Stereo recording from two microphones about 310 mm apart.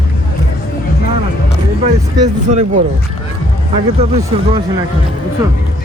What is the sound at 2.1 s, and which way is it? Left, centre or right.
Speech, right.